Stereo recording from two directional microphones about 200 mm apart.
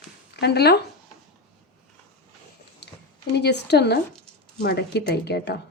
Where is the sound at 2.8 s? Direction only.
55° left (ahead or behind).